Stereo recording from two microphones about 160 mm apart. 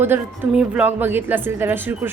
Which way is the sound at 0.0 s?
10° right (ahead or behind).